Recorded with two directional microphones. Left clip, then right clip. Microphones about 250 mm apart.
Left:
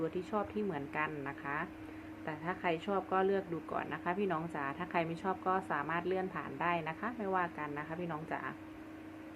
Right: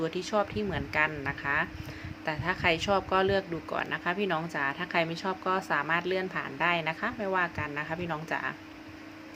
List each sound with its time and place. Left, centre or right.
0.0 s a woman's voice: centre